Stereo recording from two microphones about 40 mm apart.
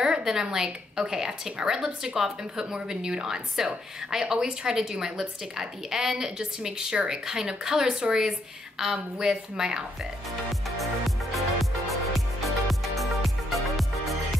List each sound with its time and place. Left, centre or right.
0.0 s a woman's voice: centre
10.8 s music: centre